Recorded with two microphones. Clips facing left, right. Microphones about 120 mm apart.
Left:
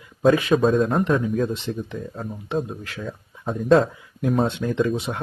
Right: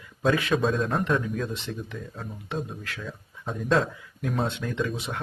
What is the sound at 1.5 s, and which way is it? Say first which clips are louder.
Speech: left 6 dB; 25° left (ahead or behind).